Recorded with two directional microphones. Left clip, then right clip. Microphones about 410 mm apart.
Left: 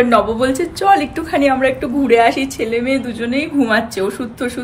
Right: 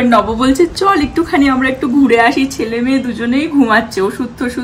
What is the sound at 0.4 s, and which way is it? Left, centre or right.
Speech, left.